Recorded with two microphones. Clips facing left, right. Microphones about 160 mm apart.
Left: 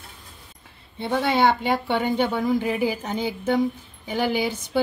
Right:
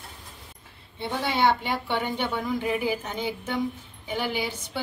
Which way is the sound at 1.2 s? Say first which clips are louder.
Left 3 dB; 50° left (ahead or behind).